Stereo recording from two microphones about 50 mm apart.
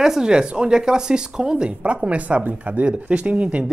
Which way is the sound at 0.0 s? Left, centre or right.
Centre.